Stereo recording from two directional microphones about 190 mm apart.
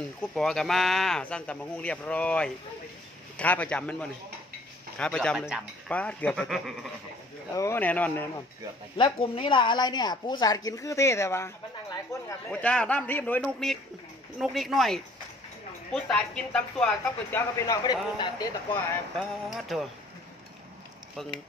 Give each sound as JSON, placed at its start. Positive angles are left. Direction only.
{"t": 0.2, "sound": "speech", "side_deg": 5}
{"t": 7.5, "sound": "speech", "side_deg": 15}
{"t": 8.9, "sound": "speech", "side_deg": 25}
{"t": 17.6, "sound": "speech", "side_deg": 20}
{"t": 18.7, "sound": "speech", "side_deg": 0}